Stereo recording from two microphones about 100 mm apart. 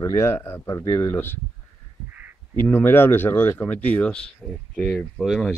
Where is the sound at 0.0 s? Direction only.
25° left (ahead or behind).